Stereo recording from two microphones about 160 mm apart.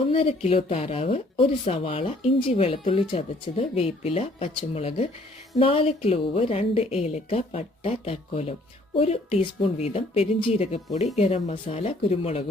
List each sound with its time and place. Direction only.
0.1 s a woman's voice: 35° left (ahead or behind)